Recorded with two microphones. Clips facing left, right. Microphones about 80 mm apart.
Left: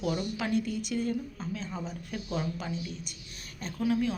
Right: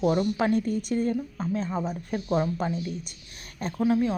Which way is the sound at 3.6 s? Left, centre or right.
Right.